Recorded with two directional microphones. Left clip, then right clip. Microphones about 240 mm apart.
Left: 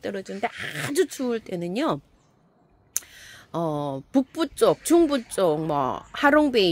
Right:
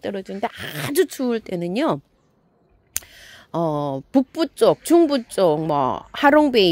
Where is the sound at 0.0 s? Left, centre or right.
Right.